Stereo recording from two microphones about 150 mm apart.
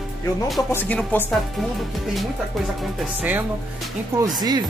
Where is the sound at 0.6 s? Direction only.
15° left (ahead or behind).